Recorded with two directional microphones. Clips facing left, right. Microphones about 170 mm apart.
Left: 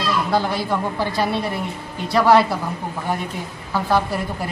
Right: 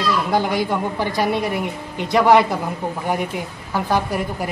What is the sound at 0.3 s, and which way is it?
A woman's voice, 15° right (ahead or behind).